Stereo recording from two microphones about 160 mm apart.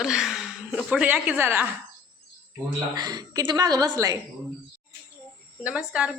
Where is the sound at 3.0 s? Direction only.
25° right (ahead or behind).